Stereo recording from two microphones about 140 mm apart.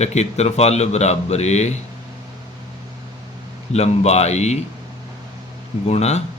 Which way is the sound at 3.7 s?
50° left (ahead or behind).